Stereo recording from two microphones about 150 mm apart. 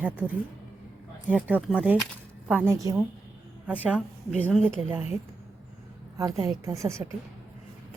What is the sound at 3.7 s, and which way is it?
Speech, 10° right (ahead or behind).